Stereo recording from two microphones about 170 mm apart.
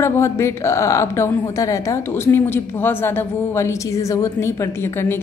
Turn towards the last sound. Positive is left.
turn(degrees=15)  # may be behind; listen again after turning